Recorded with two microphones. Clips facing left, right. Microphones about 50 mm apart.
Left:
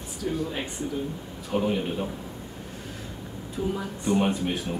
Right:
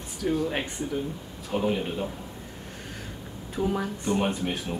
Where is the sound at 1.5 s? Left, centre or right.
Centre.